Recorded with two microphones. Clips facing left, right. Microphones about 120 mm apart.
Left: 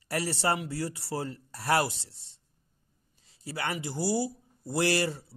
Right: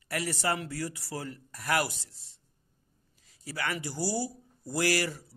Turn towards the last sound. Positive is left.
turn(degrees=25)  # may be behind; listen again after turning